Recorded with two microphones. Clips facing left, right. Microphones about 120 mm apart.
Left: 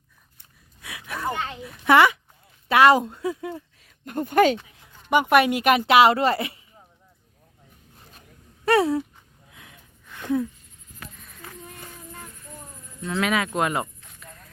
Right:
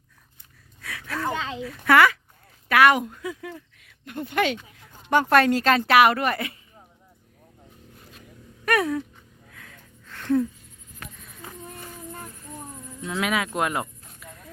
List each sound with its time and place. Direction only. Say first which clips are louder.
0.8 s a sound: right 2 dB; 20° left (ahead or behind)
1.6 s a child's voice: left 1 dB; 25° left (ahead or behind)
3.8 s speech: left 5 dB; 40° left (ahead or behind)
5.0 s a woman's voice: even; 15° left (ahead or behind)
8.6 s speech: left 4 dB; 30° left (ahead or behind)
9.5 s a sound: right 1 dB; 15° left (ahead or behind)
11.2 s a sound: right 1 dB; 5° right (ahead or behind)
13.1 s speech: left 2 dB; 5° right (ahead or behind)
14.2 s vehicle: right 1 dB; 5° right (ahead or behind)